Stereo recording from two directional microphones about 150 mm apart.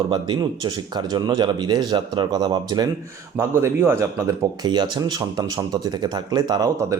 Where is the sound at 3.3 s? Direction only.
15° right (ahead or behind).